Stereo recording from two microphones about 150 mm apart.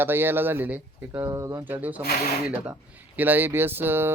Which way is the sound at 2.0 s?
90° left.